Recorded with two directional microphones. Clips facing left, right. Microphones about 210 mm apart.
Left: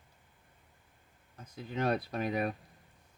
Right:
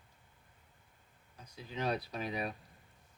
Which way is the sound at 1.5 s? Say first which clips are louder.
Left 4 dB; 50° left (ahead or behind).